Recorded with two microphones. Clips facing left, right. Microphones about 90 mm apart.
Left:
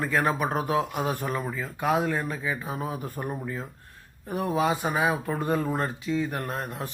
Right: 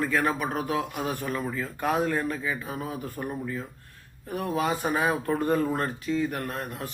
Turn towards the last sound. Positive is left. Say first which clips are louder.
# left 1 dB
turn(degrees=25)  # may be behind; listen again after turning